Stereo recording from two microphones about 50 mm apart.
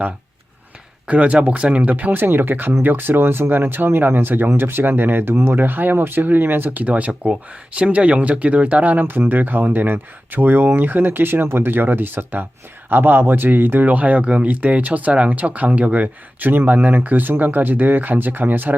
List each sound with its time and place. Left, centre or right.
1.0 s speech: right